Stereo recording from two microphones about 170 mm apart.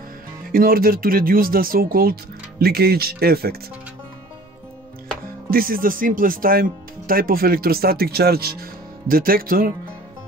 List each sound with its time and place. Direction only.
0.5 s speech: 60° right (ahead or behind)
5.5 s speech: 55° right (ahead or behind)